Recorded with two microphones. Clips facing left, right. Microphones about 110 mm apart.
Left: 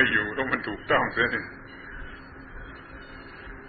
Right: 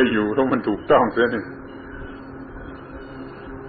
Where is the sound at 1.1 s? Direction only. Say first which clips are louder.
Right 9 dB; 35° right (ahead or behind).